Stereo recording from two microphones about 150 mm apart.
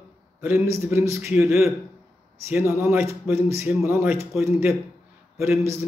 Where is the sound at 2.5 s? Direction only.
15° right (ahead or behind).